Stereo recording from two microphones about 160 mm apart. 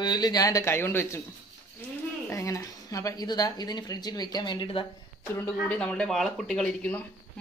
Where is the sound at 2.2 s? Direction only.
20° left (ahead or behind).